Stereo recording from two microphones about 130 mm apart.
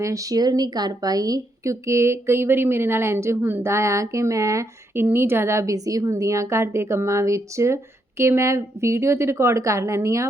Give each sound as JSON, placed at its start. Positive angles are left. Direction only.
{"t": 0.0, "sound": "a woman's voice", "side_deg": -25}